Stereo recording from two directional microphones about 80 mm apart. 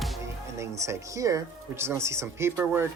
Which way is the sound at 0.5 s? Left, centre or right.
Right.